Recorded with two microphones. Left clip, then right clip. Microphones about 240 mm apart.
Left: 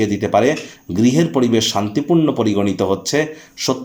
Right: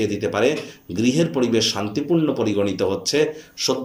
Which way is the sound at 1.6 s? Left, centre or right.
Left.